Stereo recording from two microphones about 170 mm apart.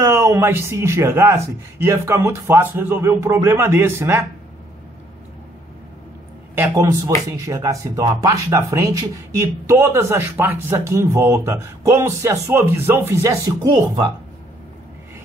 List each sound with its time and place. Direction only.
0.0 s speech: 15° right (ahead or behind)
6.5 s speech: 15° right (ahead or behind)